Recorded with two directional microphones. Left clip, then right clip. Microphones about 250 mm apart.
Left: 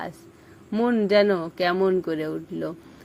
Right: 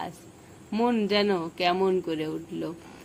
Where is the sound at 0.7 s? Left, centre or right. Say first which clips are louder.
Left 5 dB; centre.